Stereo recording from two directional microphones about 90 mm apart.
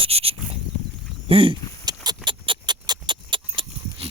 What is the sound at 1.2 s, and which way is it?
Speech, 85° right.